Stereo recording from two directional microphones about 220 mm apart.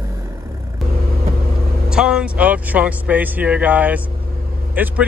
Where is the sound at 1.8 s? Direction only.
5° right (ahead or behind).